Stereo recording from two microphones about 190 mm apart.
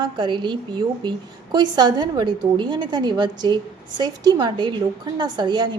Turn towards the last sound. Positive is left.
turn(degrees=-25)  # may be behind; listen again after turning